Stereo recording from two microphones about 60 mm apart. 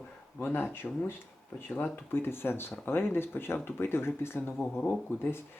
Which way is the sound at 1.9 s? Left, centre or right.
Left.